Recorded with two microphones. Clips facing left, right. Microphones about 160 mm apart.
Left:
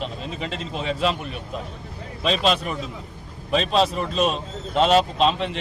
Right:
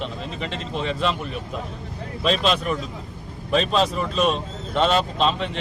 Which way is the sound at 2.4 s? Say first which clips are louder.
Left 1 dB; 40° left (ahead or behind).